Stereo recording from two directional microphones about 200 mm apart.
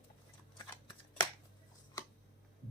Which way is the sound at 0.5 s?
25° left (ahead or behind).